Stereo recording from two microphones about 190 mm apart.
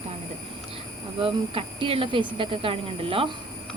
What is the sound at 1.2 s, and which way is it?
Speech, 30° right (ahead or behind).